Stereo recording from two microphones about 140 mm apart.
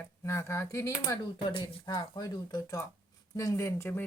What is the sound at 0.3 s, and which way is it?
Speech, 20° left (ahead or behind).